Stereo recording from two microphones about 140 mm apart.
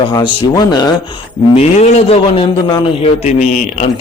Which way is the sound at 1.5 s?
50° left (ahead or behind).